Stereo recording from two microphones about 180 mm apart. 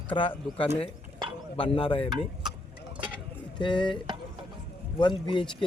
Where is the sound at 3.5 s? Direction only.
25° left (ahead or behind).